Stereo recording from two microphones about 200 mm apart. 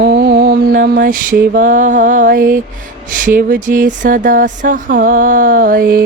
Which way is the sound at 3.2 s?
40° right (ahead or behind).